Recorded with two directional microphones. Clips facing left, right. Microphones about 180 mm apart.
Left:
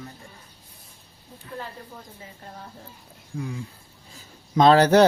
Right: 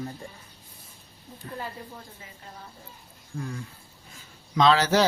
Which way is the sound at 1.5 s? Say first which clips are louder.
Left 1 dB; 45° right (ahead or behind).